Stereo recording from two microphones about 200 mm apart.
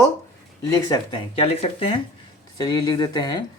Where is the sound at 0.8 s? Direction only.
20° left (ahead or behind).